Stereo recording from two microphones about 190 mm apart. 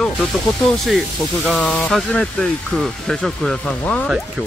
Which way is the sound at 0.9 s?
Centre (ahead or behind).